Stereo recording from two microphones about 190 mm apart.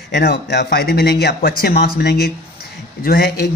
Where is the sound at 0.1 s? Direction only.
55° left (ahead or behind).